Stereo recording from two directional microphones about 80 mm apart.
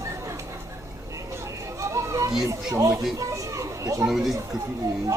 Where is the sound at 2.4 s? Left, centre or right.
Right.